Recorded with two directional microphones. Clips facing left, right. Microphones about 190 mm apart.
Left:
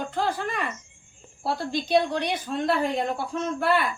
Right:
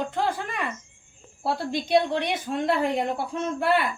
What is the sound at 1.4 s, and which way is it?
Speech, 20° right (ahead or behind).